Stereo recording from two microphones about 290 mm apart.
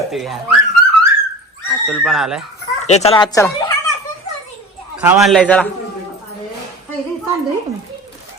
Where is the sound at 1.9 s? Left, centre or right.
Centre.